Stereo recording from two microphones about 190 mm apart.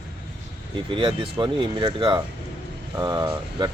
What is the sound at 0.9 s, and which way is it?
Speech, 25° right (ahead or behind).